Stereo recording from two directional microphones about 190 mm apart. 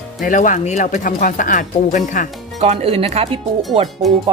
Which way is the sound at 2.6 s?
30° right (ahead or behind).